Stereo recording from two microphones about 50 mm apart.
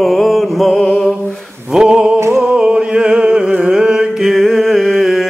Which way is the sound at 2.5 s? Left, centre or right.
Centre.